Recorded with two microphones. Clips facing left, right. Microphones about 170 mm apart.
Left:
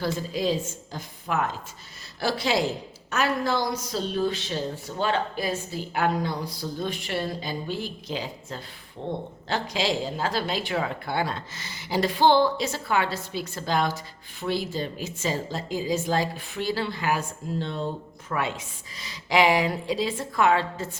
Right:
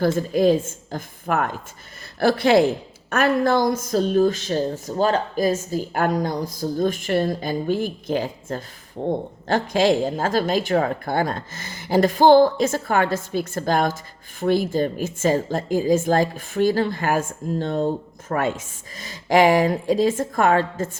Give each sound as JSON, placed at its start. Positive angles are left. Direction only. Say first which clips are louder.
{"t": 0.0, "sound": "a woman's voice", "louder": "right 9 dB", "side_deg": -50}